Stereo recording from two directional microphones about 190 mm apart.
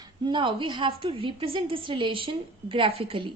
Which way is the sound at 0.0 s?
25° right (ahead or behind).